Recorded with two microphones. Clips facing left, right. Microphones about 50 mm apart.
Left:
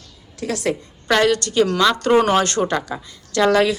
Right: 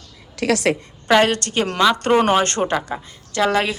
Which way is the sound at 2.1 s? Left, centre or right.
Centre.